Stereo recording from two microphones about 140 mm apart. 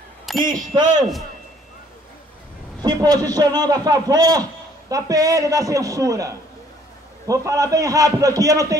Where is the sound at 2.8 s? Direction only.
30° right (ahead or behind).